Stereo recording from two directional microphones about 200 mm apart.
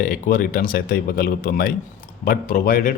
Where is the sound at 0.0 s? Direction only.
45° left (ahead or behind).